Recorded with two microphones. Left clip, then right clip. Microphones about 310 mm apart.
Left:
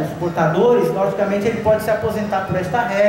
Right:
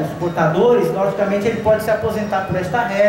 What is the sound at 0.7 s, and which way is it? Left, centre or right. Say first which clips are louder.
A man's voice: even; centre.